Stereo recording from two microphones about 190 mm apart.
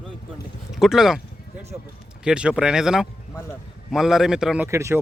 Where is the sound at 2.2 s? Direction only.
5° right (ahead or behind).